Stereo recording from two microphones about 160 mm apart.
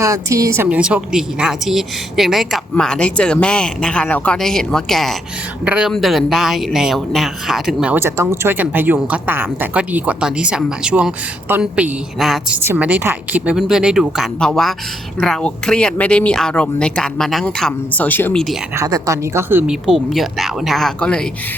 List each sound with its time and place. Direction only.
0.0 s a woman's voice: 20° right (ahead or behind); by 18.4 s 10° left (ahead or behind)
18.8 s speech: 20° right (ahead or behind)
19.9 s a woman's voice: centre (ahead or behind)